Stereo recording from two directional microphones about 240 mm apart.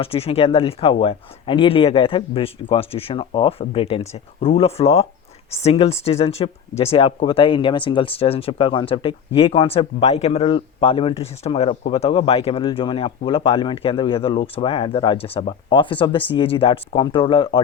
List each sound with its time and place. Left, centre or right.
0.0 s speech: left